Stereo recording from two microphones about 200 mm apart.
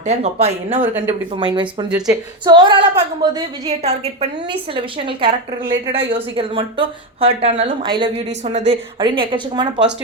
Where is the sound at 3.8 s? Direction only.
30° right (ahead or behind).